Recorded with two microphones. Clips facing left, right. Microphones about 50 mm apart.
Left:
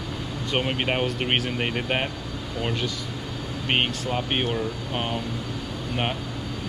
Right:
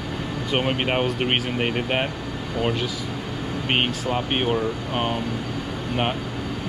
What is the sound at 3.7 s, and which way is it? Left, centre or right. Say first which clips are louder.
Speech: right 1 dB; centre.